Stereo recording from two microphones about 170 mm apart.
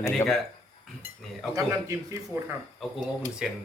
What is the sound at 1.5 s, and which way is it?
Speech, 20° right (ahead or behind).